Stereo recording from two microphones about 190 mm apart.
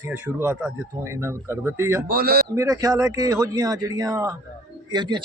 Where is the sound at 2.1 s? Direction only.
55° right (ahead or behind).